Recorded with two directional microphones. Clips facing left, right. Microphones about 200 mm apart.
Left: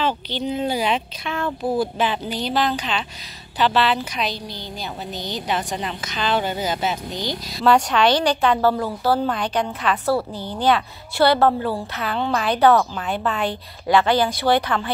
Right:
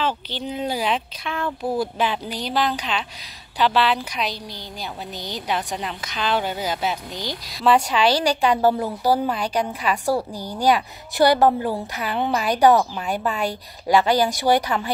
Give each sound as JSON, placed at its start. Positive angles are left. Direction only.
{"t": 0.0, "sound": "a woman's voice", "side_deg": -5}